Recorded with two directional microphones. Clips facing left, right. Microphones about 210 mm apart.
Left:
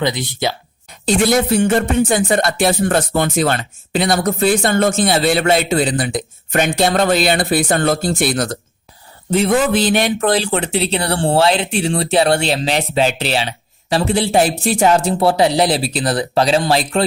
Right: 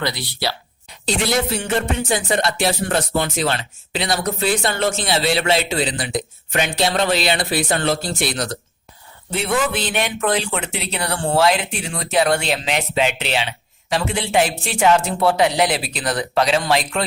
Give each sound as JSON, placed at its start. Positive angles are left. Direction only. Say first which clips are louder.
{"t": 0.0, "sound": "speech", "louder": "left 5 dB", "side_deg": 20}
{"t": 1.0, "sound": "music", "louder": "left 6 dB", "side_deg": 50}
{"t": 9.3, "sound": "speech", "louder": "left 7 dB", "side_deg": 40}